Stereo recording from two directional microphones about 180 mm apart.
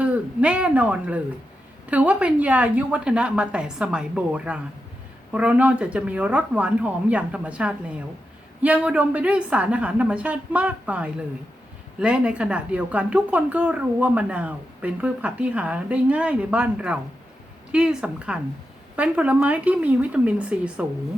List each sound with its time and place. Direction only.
0.0 s a woman's voice: 5° right (ahead or behind)